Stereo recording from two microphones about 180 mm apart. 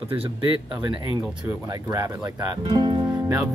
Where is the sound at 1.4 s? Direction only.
20° right (ahead or behind).